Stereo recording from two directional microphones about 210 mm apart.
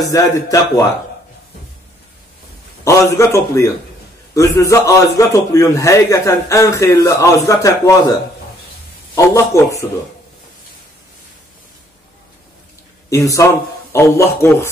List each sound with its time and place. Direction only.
0.0 s a man's voice: 15° left (ahead or behind)
2.8 s a man's voice: 15° left (ahead or behind)
13.1 s a man's voice: 15° left (ahead or behind)